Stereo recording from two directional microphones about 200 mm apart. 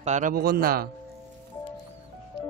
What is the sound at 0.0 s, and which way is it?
Speech, 40° right (ahead or behind).